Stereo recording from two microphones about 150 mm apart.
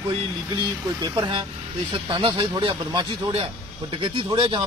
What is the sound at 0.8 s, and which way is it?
A man's voice, 25° right (ahead or behind).